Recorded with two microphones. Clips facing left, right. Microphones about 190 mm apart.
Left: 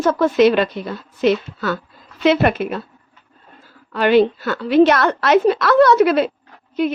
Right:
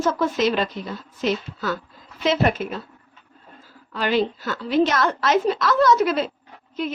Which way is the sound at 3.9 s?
65° left (ahead or behind).